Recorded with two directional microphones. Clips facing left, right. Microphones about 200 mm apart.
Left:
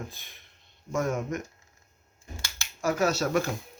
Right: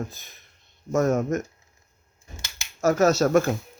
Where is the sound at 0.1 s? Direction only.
45° right (ahead or behind).